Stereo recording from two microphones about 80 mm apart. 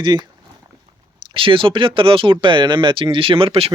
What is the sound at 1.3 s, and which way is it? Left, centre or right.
Speech, right.